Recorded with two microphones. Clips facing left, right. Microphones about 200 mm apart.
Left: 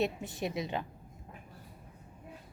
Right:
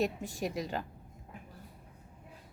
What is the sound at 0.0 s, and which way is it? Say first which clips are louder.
Speech: even; 40° right (ahead or behind).